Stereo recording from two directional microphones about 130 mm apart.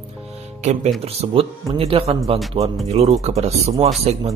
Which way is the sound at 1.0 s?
45° right (ahead or behind).